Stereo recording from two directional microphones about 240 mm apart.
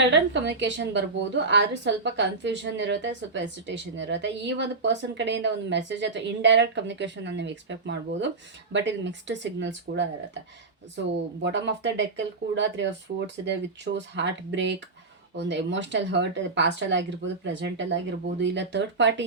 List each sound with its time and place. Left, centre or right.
0.1 s a woman's voice: right
11.4 s a woman's voice: right